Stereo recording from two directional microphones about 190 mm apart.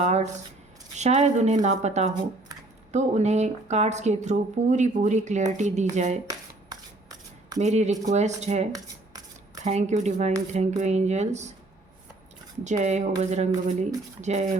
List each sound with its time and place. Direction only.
0.0 s speech: 35° right (ahead or behind)
6.2 s shuffling cards: 20° right (ahead or behind)
7.6 s speech: 40° right (ahead or behind)
9.6 s speech: 35° right (ahead or behind)
12.6 s speech: 40° right (ahead or behind)